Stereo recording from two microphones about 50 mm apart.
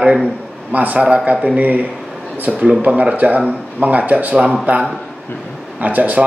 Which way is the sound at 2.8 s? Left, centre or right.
Right.